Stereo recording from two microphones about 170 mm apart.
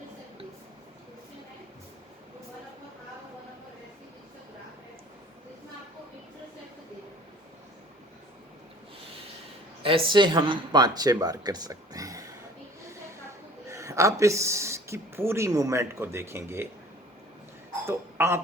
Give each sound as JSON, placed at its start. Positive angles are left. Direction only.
{"t": 9.8, "sound": "speech", "side_deg": -30}
{"t": 13.7, "sound": "speech", "side_deg": -15}
{"t": 17.8, "sound": "speech", "side_deg": -15}